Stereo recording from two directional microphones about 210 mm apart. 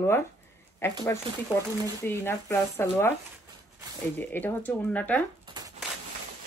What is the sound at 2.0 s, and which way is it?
Speech, 10° left (ahead or behind).